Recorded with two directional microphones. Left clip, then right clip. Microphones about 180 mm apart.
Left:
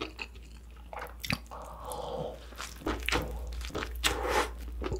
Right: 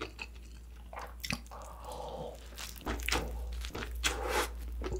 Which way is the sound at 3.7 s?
25° left (ahead or behind).